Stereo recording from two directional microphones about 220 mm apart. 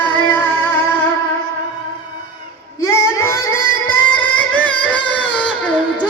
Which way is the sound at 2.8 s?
80° left.